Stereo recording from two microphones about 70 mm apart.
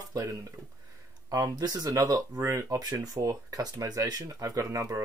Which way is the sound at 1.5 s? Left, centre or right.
Right.